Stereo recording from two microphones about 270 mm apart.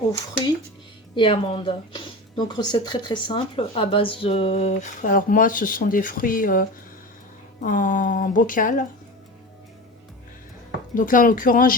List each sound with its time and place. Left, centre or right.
0.1 s speech: centre
10.9 s speech: left